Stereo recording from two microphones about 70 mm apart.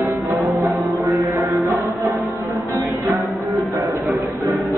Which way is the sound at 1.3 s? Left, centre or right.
Right.